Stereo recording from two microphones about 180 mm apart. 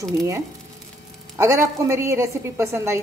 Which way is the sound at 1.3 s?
15° right (ahead or behind).